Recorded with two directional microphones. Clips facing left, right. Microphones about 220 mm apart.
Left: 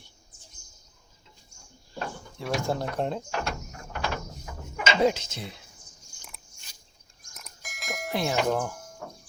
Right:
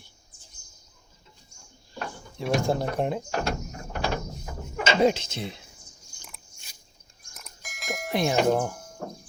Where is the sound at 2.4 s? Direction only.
15° right (ahead or behind).